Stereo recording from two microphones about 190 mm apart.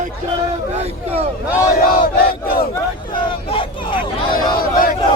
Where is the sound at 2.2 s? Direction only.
50° left (ahead or behind).